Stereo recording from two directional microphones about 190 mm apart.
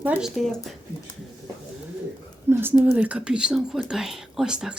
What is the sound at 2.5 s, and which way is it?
Speech, 10° right (ahead or behind).